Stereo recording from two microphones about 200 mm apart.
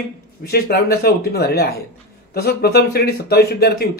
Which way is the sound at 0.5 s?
50° left (ahead or behind).